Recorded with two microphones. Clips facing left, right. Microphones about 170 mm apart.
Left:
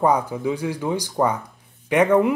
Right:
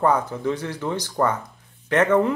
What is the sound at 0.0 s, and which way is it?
Speech, 10° left (ahead or behind).